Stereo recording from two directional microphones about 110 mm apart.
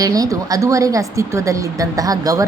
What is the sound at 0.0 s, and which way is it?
A woman's voice, 35° right (ahead or behind).